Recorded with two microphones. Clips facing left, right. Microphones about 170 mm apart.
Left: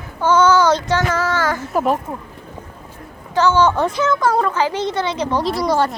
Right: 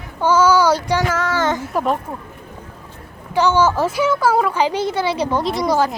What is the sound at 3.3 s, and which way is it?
Speech, 15° right (ahead or behind).